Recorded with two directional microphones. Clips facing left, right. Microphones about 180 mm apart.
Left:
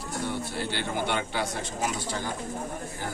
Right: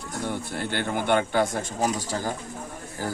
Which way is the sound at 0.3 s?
50° right (ahead or behind).